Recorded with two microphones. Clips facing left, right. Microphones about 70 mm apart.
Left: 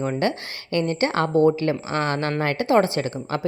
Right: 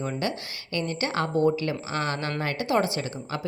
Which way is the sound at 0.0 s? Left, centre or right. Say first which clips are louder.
Left 6 dB; left.